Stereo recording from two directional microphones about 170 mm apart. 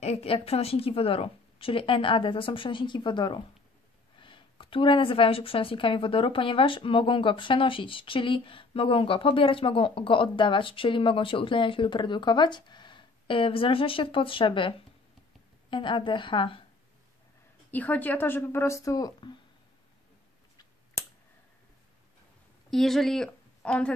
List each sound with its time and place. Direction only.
0.0 s a woman's voice: 35° left (ahead or behind)
17.6 s speech: 10° left (ahead or behind)
22.7 s speech: centre (ahead or behind)